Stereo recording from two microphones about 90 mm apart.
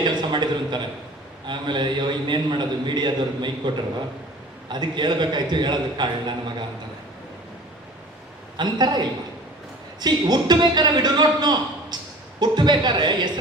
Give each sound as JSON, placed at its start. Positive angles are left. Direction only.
{"t": 0.0, "sound": "a man's voice", "side_deg": -55}
{"t": 8.5, "sound": "a man's voice", "side_deg": -50}